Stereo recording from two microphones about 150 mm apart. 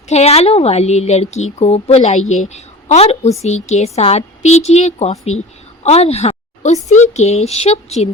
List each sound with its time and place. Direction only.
0.1 s a woman's voice: 45° left (ahead or behind)
5.8 s a sound: 45° left (ahead or behind)
6.8 s a woman's voice: 50° left (ahead or behind)